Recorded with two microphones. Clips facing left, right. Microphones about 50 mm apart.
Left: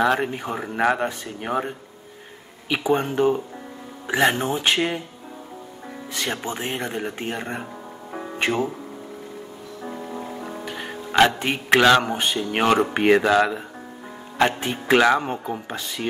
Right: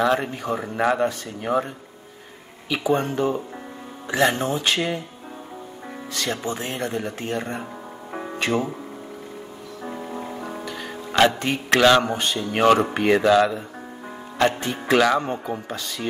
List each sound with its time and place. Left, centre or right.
0.0 s speech: centre
6.1 s speech: centre
10.6 s music: left
11.3 s speech: centre
12.9 s speech: left
15.3 s speech: centre
15.6 s speech: left